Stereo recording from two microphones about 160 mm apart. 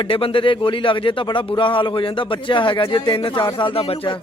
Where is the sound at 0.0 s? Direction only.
35° left (ahead or behind).